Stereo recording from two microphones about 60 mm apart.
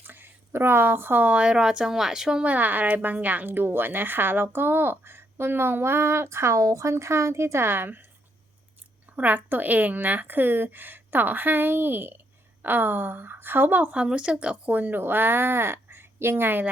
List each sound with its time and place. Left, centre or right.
0.0 s speech: right
1.4 s speech: centre
2.4 s a woman's voice: right
9.1 s a woman's voice: right
13.9 s a woman's voice: centre; by 16.6 s right